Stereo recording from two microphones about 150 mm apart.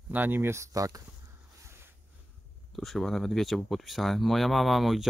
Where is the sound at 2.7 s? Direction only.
Centre (ahead or behind).